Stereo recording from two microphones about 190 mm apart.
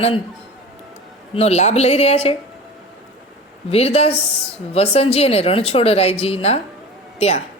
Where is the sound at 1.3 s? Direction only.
35° left (ahead or behind).